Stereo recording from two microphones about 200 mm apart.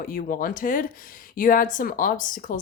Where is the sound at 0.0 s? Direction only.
45° left (ahead or behind).